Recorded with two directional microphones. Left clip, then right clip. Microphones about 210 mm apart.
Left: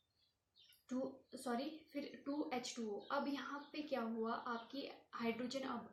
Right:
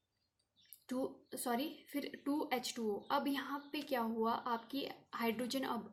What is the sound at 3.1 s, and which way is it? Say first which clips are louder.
A woman's voice: right 4 dB; 45° right (ahead or behind).